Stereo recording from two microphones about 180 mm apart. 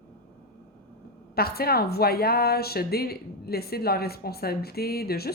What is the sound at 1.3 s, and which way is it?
A woman's voice, 60° left (ahead or behind).